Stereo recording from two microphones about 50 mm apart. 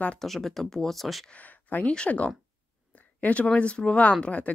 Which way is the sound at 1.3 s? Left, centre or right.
Left.